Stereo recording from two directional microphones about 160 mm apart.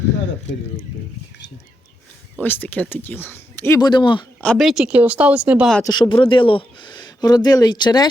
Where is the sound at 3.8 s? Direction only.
30° left (ahead or behind).